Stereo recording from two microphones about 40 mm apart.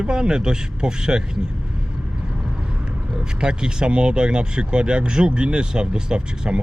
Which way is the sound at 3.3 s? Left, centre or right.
Right.